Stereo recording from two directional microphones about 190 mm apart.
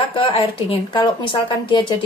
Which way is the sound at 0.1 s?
30° left (ahead or behind).